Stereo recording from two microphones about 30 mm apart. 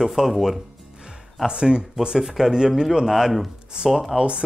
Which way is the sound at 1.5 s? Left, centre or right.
Right.